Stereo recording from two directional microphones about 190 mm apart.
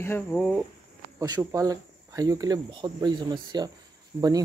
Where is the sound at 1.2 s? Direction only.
20° right (ahead or behind).